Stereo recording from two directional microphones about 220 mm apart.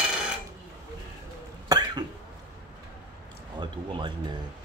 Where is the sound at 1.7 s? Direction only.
15° right (ahead or behind).